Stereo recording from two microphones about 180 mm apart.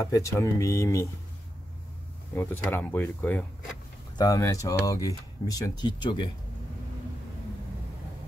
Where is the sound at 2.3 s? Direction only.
10° left (ahead or behind); by 6.3 s 25° left (ahead or behind).